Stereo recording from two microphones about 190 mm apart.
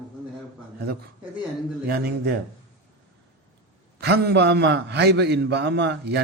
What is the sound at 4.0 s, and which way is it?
A man's voice, 60° right (ahead or behind).